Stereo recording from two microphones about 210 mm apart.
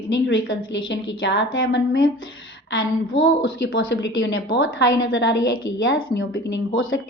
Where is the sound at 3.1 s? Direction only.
65° left (ahead or behind).